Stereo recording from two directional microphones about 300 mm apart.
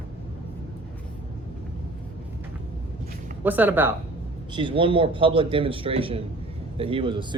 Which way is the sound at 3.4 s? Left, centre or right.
Centre.